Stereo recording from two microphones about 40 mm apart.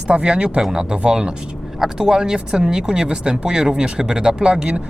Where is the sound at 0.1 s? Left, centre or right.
Right.